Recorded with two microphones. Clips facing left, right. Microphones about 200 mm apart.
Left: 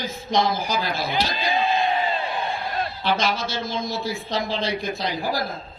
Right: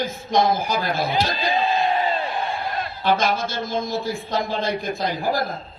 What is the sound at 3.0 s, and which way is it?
A woman's voice, 50° right (ahead or behind).